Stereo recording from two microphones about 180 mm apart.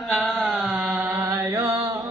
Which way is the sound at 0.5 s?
5° right (ahead or behind).